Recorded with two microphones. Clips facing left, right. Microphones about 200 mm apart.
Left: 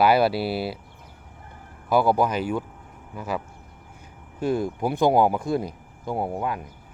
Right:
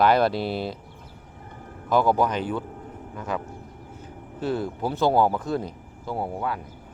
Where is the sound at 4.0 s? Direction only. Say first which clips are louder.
Left 2 dB; 15° left (ahead or behind).